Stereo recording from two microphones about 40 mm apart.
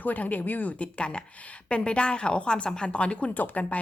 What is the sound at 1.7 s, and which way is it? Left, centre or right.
A woman's voice, left.